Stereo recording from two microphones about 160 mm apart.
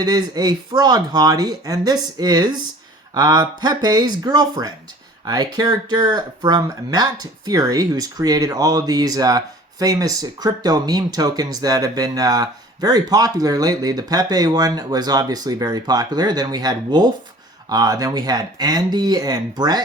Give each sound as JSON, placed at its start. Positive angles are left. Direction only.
{"t": 0.0, "sound": "speech", "side_deg": -25}